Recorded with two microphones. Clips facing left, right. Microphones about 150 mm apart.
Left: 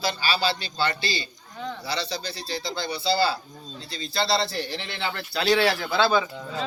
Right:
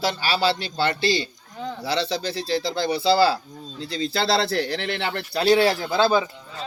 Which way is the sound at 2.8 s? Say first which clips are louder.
Right 5 dB; 90° right.